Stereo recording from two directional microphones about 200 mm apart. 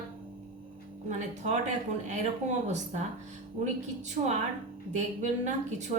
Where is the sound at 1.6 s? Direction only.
35° right (ahead or behind).